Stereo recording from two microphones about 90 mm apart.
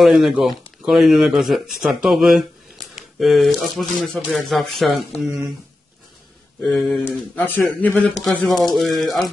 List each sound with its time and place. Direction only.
0.0 s speech: centre (ahead or behind)
3.0 s a sound: centre (ahead or behind)
3.7 s speech: centre (ahead or behind)
6.6 s speech: 5° left (ahead or behind)
7.3 s speech: 20° left (ahead or behind)
8.4 s speech: centre (ahead or behind)